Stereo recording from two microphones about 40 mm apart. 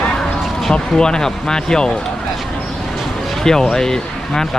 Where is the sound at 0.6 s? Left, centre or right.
Centre.